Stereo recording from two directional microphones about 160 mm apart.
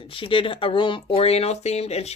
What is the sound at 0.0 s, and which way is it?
Speech, 35° left (ahead or behind).